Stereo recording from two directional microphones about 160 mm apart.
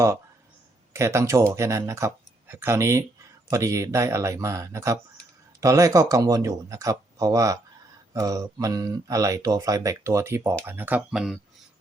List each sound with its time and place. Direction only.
0.9 s speech: 15° right (ahead or behind)